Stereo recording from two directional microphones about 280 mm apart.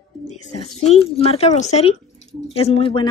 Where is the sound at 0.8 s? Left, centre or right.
Left.